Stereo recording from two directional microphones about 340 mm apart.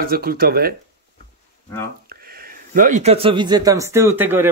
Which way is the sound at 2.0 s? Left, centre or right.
Right.